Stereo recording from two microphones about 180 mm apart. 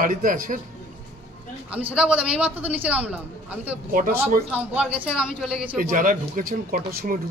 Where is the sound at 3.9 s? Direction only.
50° right (ahead or behind).